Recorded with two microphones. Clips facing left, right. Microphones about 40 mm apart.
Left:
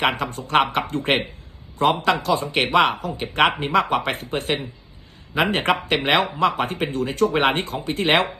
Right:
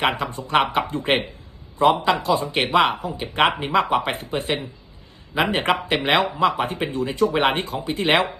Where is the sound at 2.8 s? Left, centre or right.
Right.